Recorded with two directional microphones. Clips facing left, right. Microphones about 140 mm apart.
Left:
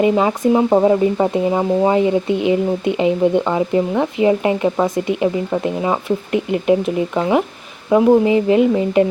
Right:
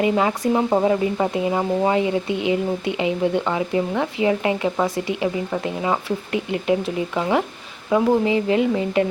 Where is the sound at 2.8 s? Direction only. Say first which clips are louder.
Left 6 dB; 35° left (ahead or behind).